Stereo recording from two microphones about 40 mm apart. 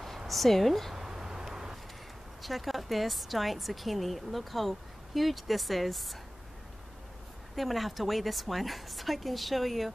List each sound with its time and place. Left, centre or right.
0.3 s a woman's voice: centre
0.9 s vehicle: centre
2.4 s a woman's voice: centre
7.5 s a woman's voice: centre